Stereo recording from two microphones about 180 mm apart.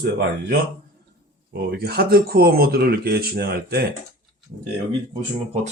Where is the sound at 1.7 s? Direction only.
60° right (ahead or behind).